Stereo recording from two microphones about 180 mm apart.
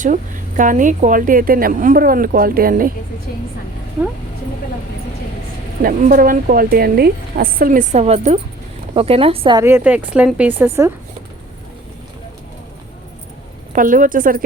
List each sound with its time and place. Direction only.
0.0 s a woman's voice: 45° right (ahead or behind)
5.8 s a woman's voice: 50° right (ahead or behind); by 9.6 s 30° right (ahead or behind)
9.6 s speech: 15° right (ahead or behind)
13.7 s a woman's voice: 50° right (ahead or behind)